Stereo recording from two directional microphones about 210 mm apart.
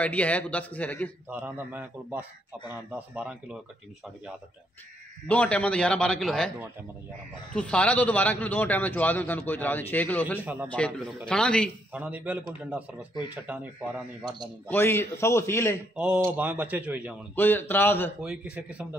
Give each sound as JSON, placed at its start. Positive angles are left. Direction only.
{"t": 0.0, "sound": "a man's voice", "side_deg": 5}
{"t": 1.3, "sound": "a man's voice", "side_deg": -10}
{"t": 5.3, "sound": "a man's voice", "side_deg": 5}
{"t": 7.5, "sound": "a man's voice", "side_deg": 5}
{"t": 10.4, "sound": "a man's voice", "side_deg": -10}
{"t": 10.7, "sound": "a man's voice", "side_deg": 5}
{"t": 11.9, "sound": "a man's voice", "side_deg": -10}
{"t": 14.7, "sound": "a man's voice", "side_deg": 10}
{"t": 16.0, "sound": "a man's voice", "side_deg": -5}
{"t": 17.4, "sound": "a man's voice", "side_deg": 10}
{"t": 18.2, "sound": "a man's voice", "side_deg": -5}